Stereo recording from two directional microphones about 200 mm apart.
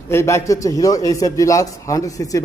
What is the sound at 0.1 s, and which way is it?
A man's voice, 15° left (ahead or behind).